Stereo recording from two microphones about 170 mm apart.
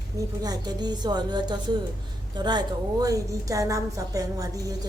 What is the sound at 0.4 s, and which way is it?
A woman's voice, 25° right (ahead or behind).